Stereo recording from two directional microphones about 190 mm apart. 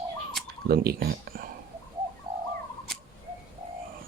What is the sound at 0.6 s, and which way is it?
Speech, 55° right (ahead or behind).